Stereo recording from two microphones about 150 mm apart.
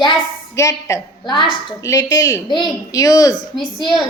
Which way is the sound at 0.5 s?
20° left (ahead or behind).